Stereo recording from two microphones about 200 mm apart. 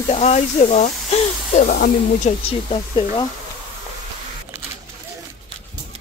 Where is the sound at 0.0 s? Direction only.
30° left (ahead or behind).